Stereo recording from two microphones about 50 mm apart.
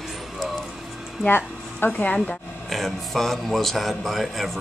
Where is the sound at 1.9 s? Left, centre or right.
Left.